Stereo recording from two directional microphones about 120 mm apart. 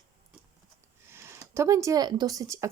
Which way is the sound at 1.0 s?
20° right (ahead or behind).